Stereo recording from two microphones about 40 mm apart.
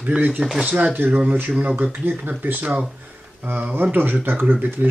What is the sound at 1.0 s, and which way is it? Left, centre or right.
Speech, right.